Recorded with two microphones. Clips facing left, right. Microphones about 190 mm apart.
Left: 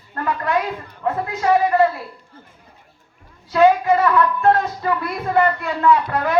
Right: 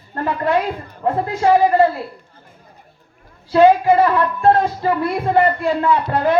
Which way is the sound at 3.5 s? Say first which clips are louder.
Right 3 dB; 30° right (ahead or behind).